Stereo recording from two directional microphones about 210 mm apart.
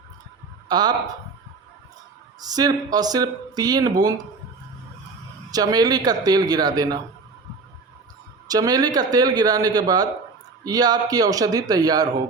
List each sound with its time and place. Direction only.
0.7 s speech: 20° right (ahead or behind)
2.4 s speech: 20° right (ahead or behind)
5.5 s speech: 20° right (ahead or behind)
8.4 s a man's voice: 15° right (ahead or behind)